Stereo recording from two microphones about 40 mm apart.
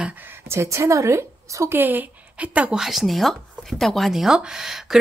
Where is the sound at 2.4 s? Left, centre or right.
Right.